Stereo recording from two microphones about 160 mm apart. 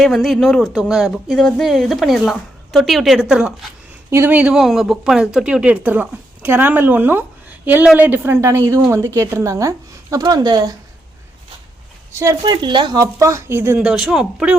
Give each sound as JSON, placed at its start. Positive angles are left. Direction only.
{"t": 0.0, "sound": "a woman's voice", "side_deg": 0}
{"t": 12.2, "sound": "a woman's voice", "side_deg": -20}